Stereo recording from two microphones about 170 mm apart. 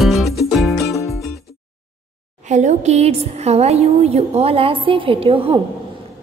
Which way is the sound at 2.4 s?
45° right (ahead or behind).